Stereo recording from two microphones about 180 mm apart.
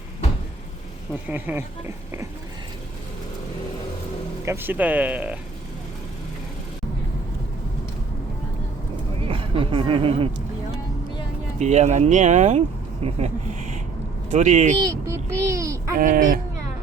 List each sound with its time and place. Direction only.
1.3 s speech: 10° right (ahead or behind)
4.4 s speech: 10° right (ahead or behind)
9.2 s speech: 30° right (ahead or behind)
11.6 s speech: 40° right (ahead or behind)
14.8 s a child's voice: 15° right (ahead or behind)
16.0 s speech: 50° right (ahead or behind)